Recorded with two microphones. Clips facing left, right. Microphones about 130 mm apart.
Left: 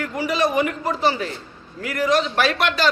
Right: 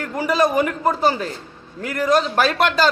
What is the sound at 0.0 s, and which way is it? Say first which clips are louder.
A man's voice: right 3 dB; 45° right (ahead or behind).